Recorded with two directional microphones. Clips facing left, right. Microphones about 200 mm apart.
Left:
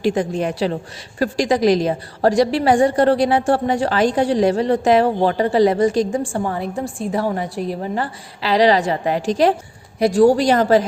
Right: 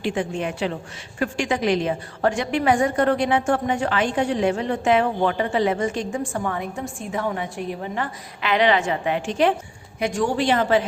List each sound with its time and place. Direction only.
0.0 s a woman's voice: 40° left (ahead or behind)